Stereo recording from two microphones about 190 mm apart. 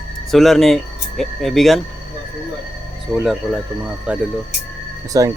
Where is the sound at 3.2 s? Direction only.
Centre (ahead or behind).